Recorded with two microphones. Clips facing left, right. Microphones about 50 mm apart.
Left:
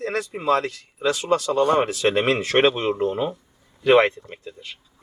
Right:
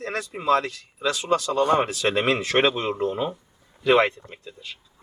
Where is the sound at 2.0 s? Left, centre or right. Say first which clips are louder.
Left 2 dB; centre.